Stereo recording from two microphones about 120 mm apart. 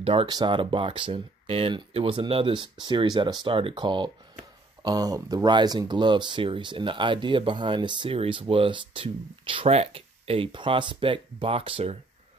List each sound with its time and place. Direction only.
0.0 s speech: 50° right (ahead or behind)
0.3 s speech: 40° right (ahead or behind)